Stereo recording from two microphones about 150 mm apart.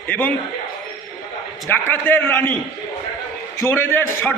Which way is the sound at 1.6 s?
15° left (ahead or behind).